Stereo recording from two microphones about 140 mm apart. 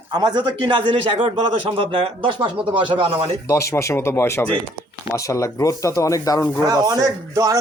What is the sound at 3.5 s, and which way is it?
Speech, 20° left (ahead or behind).